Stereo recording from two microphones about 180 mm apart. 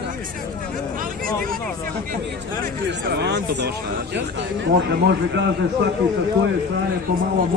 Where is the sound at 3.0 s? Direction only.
65° right (ahead or behind).